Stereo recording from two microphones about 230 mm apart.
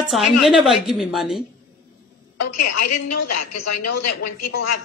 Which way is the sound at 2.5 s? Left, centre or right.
Left.